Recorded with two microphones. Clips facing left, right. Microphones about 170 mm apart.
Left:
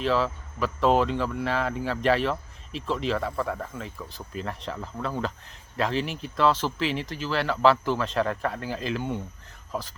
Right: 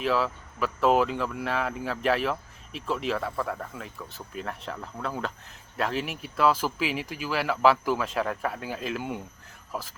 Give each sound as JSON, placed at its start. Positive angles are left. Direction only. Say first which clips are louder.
{"t": 0.0, "sound": "speech", "louder": "left 1 dB", "side_deg": 0}